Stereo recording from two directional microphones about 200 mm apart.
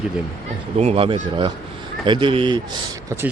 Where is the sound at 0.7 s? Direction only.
30° right (ahead or behind).